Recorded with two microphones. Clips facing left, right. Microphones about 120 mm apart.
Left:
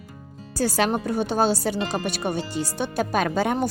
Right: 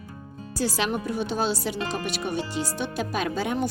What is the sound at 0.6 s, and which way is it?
Speech, 45° left (ahead or behind).